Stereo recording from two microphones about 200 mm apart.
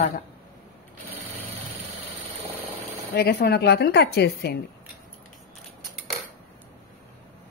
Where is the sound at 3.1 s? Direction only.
50° left (ahead or behind).